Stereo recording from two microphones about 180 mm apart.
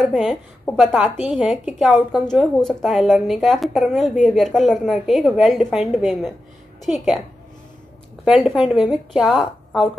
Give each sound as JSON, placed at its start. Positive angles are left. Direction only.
{"t": 0.1, "sound": "a woman's voice", "side_deg": -5}
{"t": 8.3, "sound": "a woman's voice", "side_deg": -5}